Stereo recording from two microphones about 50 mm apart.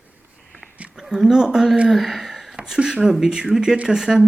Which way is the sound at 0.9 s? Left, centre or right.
Centre.